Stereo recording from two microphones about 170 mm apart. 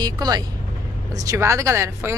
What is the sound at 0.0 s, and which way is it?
A woman's voice, 25° right (ahead or behind).